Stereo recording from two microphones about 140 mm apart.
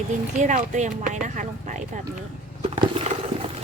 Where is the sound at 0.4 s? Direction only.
60° right (ahead or behind).